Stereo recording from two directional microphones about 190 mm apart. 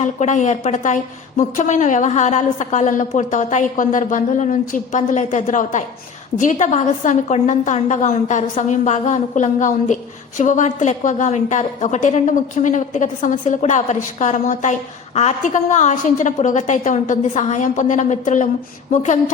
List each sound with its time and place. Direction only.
0.0 s a woman's voice: 40° left (ahead or behind)